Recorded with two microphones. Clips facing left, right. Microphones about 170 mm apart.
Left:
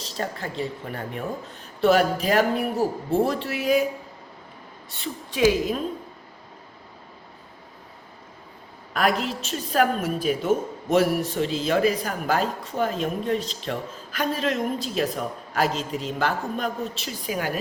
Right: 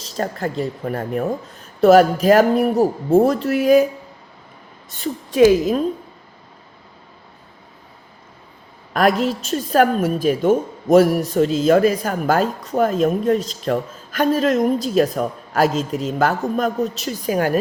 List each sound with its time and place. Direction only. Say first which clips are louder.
0.2 s speech: right 6 dB; 45° right (ahead or behind)
4.9 s speech: right 10 dB; 45° right (ahead or behind)
8.9 s a woman's voice: right 6 dB; 40° right (ahead or behind)
15.8 s a man's voice: right 6 dB; centre (ahead or behind)
16.0 s speech: right 6 dB; 45° right (ahead or behind)